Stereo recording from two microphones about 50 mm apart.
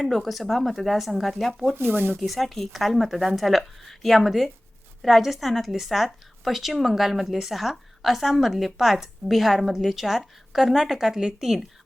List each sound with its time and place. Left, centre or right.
0.0 s a woman's voice: centre
1.7 s speech: right
2.2 s a woman's voice: centre